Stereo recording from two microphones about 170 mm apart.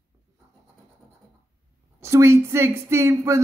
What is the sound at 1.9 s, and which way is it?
Speech, 15° right (ahead or behind).